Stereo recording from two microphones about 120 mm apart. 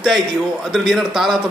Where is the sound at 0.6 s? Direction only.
Centre (ahead or behind).